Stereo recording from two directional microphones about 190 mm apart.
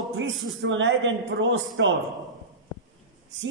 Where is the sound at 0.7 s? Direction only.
75° right (ahead or behind).